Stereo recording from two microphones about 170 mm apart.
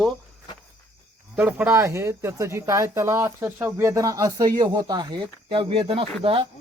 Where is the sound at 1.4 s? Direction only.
10° right (ahead or behind).